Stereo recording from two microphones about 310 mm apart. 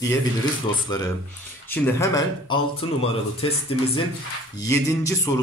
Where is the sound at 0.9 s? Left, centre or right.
Centre.